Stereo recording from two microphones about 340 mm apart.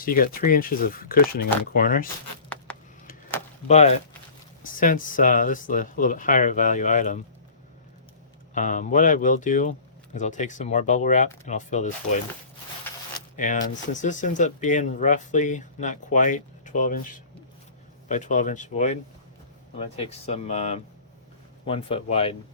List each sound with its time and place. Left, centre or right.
0.0 s speech: left
3.7 s speech: centre
8.5 s speech: left
12.9 s zipper: centre
13.3 s speech: left
18.1 s speech: left